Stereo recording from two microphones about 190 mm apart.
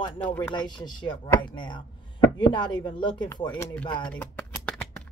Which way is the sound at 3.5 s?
10° left (ahead or behind).